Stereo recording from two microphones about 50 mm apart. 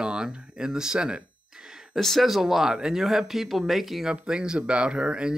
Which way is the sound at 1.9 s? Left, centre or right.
Centre.